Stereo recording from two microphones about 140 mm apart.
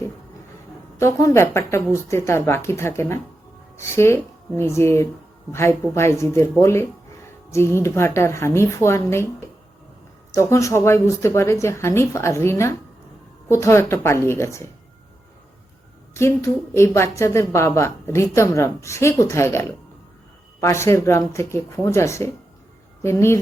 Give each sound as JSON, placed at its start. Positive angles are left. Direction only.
{"t": 0.9, "sound": "a woman's voice", "side_deg": 20}
{"t": 10.5, "sound": "a woman's voice", "side_deg": 20}
{"t": 16.1, "sound": "a woman's voice", "side_deg": 20}